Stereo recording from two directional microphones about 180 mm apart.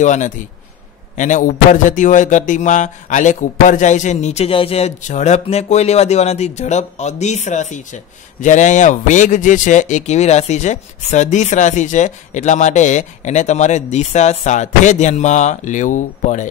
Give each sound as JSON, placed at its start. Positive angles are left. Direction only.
{"t": 0.0, "sound": "a man's voice", "side_deg": 40}